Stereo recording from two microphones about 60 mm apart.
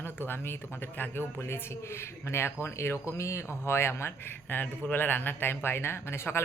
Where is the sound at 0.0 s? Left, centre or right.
Left.